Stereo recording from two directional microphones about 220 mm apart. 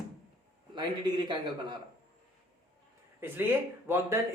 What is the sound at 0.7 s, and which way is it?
A man's voice, 20° right (ahead or behind).